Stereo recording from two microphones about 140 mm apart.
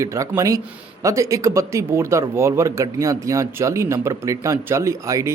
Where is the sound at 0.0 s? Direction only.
20° right (ahead or behind).